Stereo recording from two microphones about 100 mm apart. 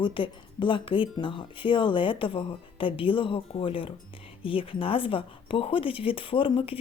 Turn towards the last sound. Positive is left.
turn(degrees=65)  # may be behind; listen again after turning